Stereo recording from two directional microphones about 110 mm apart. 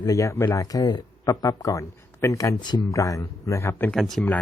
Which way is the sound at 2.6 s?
40° left (ahead or behind).